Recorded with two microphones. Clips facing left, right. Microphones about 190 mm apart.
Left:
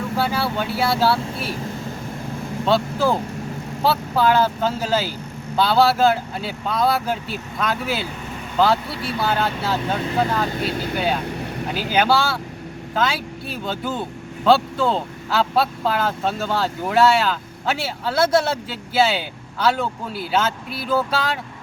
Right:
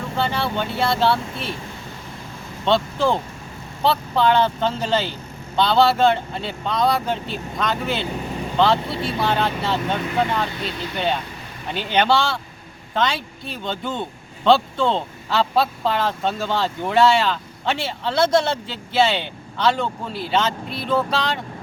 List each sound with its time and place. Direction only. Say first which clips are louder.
0.2 s speech: even; 5° left (ahead or behind)
2.6 s speech: even; 5° left (ahead or behind)
8.9 s speech: right 2 dB; 25° right (ahead or behind)
9.1 s speech: even; 5° left (ahead or behind)
10.5 s speech: left 4 dB; 50° left (ahead or behind)
10.9 s speech: right 1 dB; 5° left (ahead or behind)
11.3 s vehicle: left 10 dB; 65° left (ahead or behind)
11.7 s speech: even; 5° left (ahead or behind)